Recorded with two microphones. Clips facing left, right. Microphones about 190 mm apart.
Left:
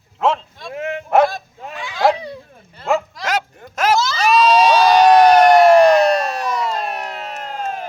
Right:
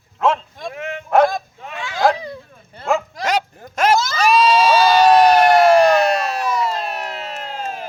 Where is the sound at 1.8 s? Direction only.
20° left (ahead or behind).